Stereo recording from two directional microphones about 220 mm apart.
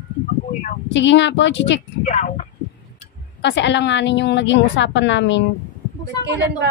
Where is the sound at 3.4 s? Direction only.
55° left (ahead or behind).